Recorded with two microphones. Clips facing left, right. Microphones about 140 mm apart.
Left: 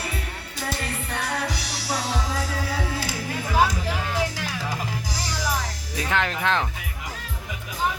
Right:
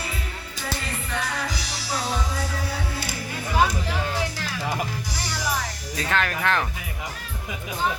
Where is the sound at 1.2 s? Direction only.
65° left (ahead or behind); by 2.7 s 90° left.